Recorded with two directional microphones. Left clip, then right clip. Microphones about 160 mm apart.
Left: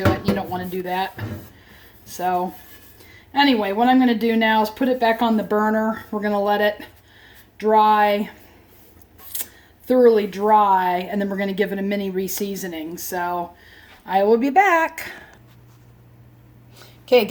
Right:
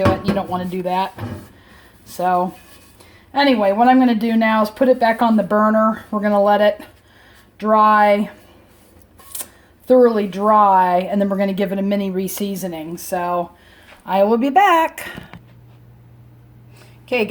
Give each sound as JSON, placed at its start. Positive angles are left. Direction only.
{"t": 0.3, "sound": "speech", "side_deg": -40}
{"t": 3.6, "sound": "speech", "side_deg": -35}
{"t": 9.3, "sound": "speech", "side_deg": -35}